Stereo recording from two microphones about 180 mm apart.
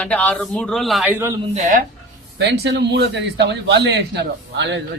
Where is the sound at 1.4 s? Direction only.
40° right (ahead or behind).